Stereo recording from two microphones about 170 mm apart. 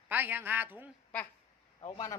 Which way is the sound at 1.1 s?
10° left (ahead or behind).